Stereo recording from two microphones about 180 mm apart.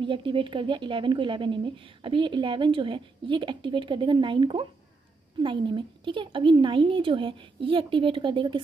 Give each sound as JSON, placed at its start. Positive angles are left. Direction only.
{"t": 0.0, "sound": "speech", "side_deg": -30}